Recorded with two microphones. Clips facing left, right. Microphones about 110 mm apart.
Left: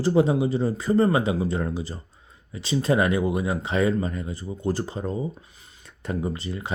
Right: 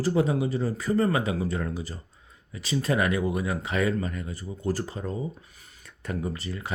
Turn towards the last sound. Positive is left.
turn(degrees=25)  # may be behind; listen again after turning